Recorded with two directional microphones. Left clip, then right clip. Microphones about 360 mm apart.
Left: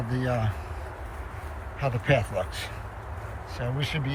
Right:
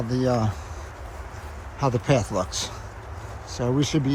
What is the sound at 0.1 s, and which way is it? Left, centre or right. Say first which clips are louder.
Speech: right 6 dB; centre.